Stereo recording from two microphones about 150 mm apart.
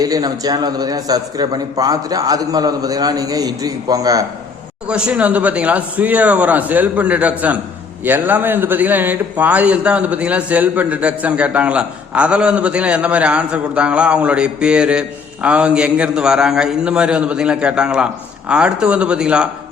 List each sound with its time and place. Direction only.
0.0 s a man's voice: 25° right (ahead or behind)
4.9 s a man's voice: 5° right (ahead or behind)